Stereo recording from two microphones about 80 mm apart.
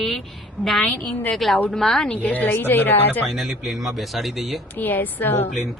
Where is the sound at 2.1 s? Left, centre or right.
Centre.